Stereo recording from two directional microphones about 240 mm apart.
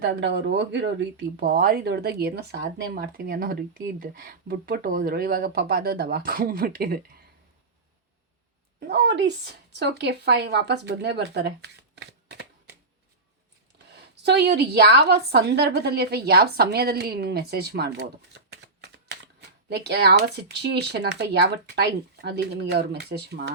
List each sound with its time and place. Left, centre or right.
0.0 s a woman's voice: right
8.9 s speech: right
13.9 s a woman's voice: right